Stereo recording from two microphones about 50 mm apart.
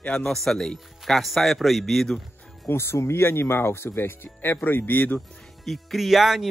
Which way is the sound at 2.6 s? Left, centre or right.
Left.